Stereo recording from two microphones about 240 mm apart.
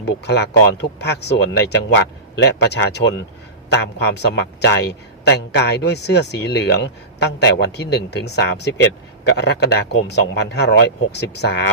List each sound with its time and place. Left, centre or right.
0.0 s speech: left